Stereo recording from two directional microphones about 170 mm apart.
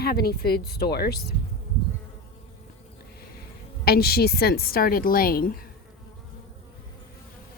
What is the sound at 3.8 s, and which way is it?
A woman's voice, 65° left (ahead or behind).